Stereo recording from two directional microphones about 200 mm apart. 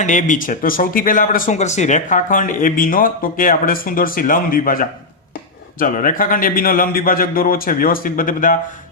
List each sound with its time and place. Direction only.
0.0 s speech: 40° left (ahead or behind)